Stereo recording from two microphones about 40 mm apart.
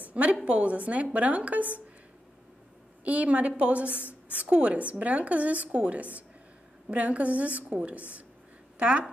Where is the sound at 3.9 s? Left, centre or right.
Left.